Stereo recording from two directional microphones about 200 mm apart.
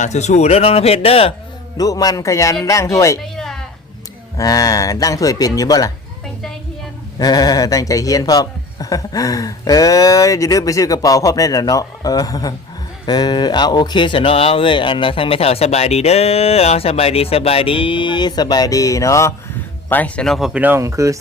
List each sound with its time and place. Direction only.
0.0 s speech: 35° left (ahead or behind)
1.8 s speech: 20° left (ahead or behind)
3.3 s a sound: centre (ahead or behind)
4.4 s speech: 20° left (ahead or behind)
7.2 s speech: 20° left (ahead or behind); by 21.2 s 15° right (ahead or behind)